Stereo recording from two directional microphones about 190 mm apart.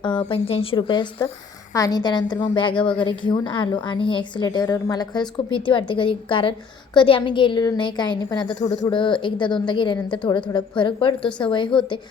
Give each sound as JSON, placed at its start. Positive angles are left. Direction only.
{"t": 0.0, "sound": "a woman's voice", "side_deg": 25}
{"t": 11.2, "sound": "a woman's voice", "side_deg": 5}